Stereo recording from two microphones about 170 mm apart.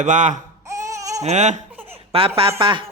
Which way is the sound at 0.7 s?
20° right (ahead or behind).